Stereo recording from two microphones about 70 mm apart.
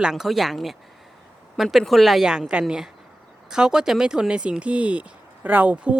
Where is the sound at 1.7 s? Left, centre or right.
Centre.